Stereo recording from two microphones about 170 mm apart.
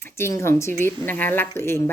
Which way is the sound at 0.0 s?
15° left (ahead or behind).